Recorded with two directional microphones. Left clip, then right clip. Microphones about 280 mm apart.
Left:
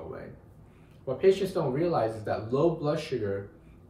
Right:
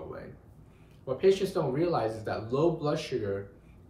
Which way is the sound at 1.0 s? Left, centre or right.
Centre.